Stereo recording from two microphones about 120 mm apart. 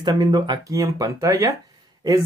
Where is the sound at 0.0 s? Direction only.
35° right (ahead or behind).